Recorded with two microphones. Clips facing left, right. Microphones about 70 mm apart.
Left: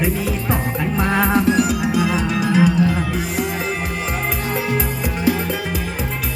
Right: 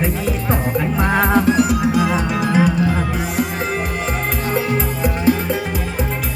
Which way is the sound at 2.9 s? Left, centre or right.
Right.